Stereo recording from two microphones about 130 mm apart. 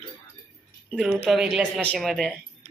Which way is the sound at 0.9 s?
5° right (ahead or behind).